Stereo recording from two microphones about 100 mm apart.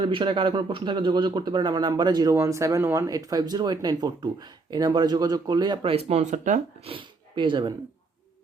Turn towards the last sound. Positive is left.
turn(degrees=-50)  # may be behind; listen again after turning